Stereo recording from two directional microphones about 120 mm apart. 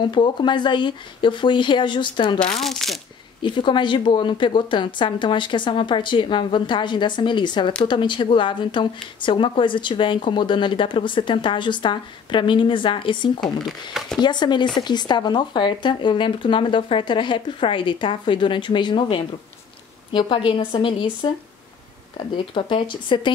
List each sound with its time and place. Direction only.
0.0 s speech: 40° left (ahead or behind)
2.4 s speech: centre (ahead or behind)
3.4 s speech: 40° left (ahead or behind)
13.4 s speech: 5° left (ahead or behind)
14.2 s speech: 40° left (ahead or behind)